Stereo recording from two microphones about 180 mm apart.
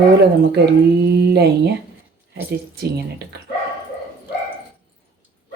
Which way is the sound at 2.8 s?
65° right (ahead or behind).